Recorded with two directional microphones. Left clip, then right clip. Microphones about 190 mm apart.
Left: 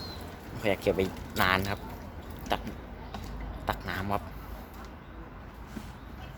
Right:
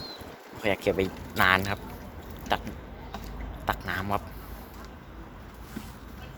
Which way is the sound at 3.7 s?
Centre (ahead or behind).